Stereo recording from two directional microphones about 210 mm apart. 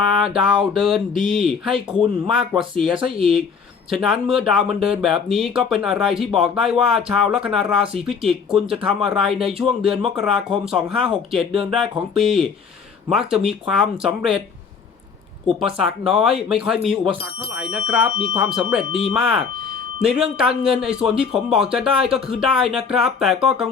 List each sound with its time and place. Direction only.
0.4 s speech: 5° right (ahead or behind)
3.8 s speech: centre (ahead or behind)
15.6 s speech: centre (ahead or behind)
16.9 s speech: 25° right (ahead or behind)
17.6 s speech: 5° right (ahead or behind)